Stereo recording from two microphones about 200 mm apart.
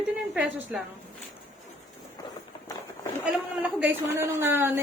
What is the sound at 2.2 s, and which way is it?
Run, 20° left (ahead or behind).